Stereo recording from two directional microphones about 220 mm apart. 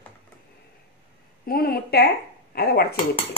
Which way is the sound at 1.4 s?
45° left (ahead or behind).